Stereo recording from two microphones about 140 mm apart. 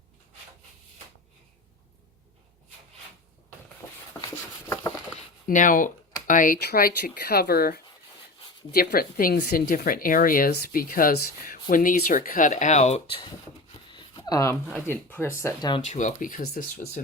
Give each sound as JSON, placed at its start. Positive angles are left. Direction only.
{"t": 5.5, "sound": "speech", "side_deg": 70}
{"t": 11.7, "sound": "speech", "side_deg": 80}
{"t": 13.9, "sound": "a sound", "side_deg": 30}
{"t": 14.8, "sound": "speech", "side_deg": 15}
{"t": 15.8, "sound": "speech", "side_deg": 60}